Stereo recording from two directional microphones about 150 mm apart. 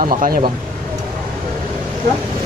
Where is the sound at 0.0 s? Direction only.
70° right (ahead or behind).